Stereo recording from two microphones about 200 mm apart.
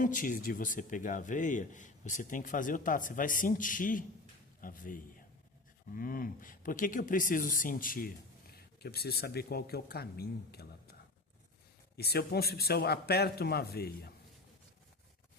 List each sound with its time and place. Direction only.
0.0 s speech: 40° left (ahead or behind)
11.9 s speech: 50° left (ahead or behind)